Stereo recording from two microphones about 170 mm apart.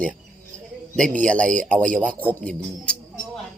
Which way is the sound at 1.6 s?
5° left (ahead or behind).